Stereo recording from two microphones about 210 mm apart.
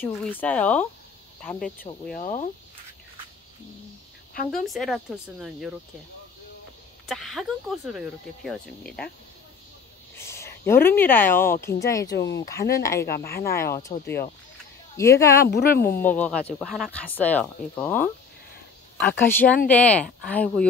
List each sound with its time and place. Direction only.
0.0 s speech: 10° left (ahead or behind)
2.1 s speech: 35° left (ahead or behind)
4.5 s speech: centre (ahead or behind)
7.1 s speech: centre (ahead or behind)
10.1 s a woman's voice: 15° left (ahead or behind)
12.2 s speech: 60° left (ahead or behind)
12.7 s speech: 15° left (ahead or behind)
13.1 s a woman's voice: 50° left (ahead or behind)
13.4 s speech: 15° left (ahead or behind)
15.4 s a woman's voice: 50° left (ahead or behind)
16.0 s speech: 5° left (ahead or behind)